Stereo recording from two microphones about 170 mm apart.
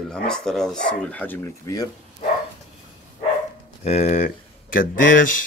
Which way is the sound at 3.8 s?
40° left (ahead or behind).